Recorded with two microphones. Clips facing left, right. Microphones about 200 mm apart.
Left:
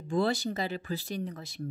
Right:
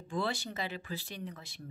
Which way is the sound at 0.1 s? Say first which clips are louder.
Left 7 dB; 40° left (ahead or behind).